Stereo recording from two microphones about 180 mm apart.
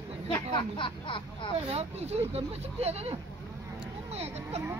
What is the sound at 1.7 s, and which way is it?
Speech, 35° right (ahead or behind).